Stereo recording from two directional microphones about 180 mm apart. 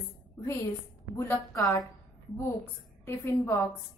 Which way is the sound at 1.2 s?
15° left (ahead or behind).